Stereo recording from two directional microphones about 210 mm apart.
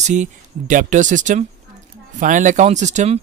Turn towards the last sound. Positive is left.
turn(degrees=-30)  # may be behind; listen again after turning